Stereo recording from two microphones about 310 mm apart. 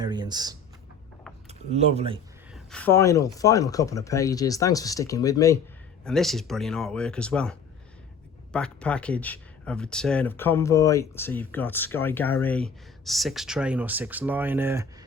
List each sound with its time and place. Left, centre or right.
0.0 s a sound: centre
1.5 s speech: right
2.5 s speech: centre
8.5 s speech: centre